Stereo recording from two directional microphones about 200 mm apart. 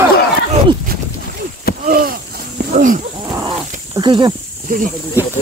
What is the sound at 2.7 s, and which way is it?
Wild animals, 45° right (ahead or behind).